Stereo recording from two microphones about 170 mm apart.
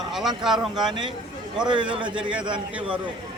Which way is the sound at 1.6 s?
30° right (ahead or behind).